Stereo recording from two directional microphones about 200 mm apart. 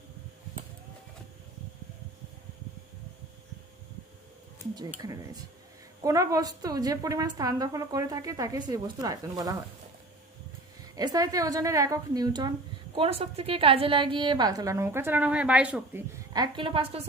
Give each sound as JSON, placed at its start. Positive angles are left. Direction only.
{"t": 4.9, "sound": "a woman's voice", "side_deg": -20}
{"t": 10.9, "sound": "a woman's voice", "side_deg": -20}